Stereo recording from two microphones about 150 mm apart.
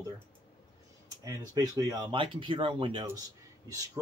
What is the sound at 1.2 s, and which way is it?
Speech, 25° right (ahead or behind).